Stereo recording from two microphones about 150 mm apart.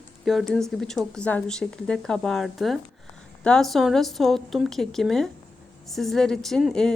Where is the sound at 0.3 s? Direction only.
Centre (ahead or behind).